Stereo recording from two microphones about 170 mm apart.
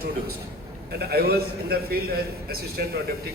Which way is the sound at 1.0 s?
65° right (ahead or behind).